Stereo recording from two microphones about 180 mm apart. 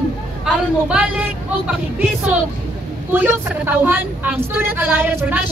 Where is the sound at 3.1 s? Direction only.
10° right (ahead or behind).